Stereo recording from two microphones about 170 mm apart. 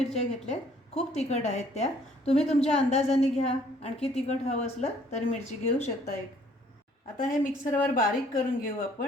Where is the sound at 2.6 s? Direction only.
40° left (ahead or behind).